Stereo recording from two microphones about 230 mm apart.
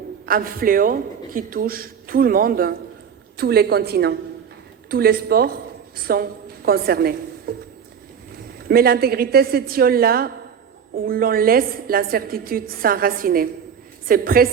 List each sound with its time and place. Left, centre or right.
0.3 s a woman's voice: right
8.6 s a woman's voice: right